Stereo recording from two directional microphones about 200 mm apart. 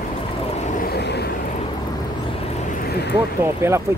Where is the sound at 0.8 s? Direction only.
55° left (ahead or behind).